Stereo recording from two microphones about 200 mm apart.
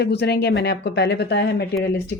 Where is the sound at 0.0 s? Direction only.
55° left (ahead or behind).